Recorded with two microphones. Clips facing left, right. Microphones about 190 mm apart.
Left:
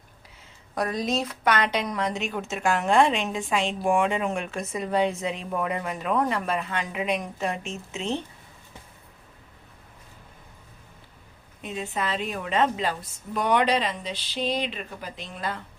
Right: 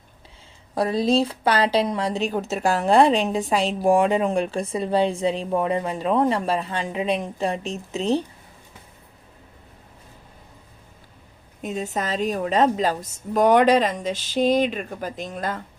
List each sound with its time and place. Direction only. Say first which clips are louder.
0.8 s speech: right 7 dB; 30° right (ahead or behind)
11.6 s a woman's voice: right 4 dB; 45° right (ahead or behind)